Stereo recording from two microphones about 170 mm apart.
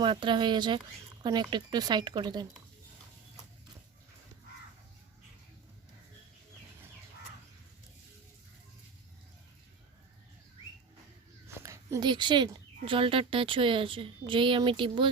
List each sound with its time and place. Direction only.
0.0 s speech: 30° right (ahead or behind)
11.4 s speech: 15° right (ahead or behind)